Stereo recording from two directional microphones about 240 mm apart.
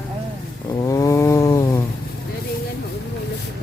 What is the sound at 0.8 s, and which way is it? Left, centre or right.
Chainsaw, centre.